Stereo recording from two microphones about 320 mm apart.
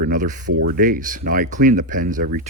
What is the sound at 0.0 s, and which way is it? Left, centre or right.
Speech, right.